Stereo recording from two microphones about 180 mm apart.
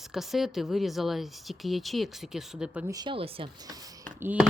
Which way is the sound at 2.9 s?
30° right (ahead or behind).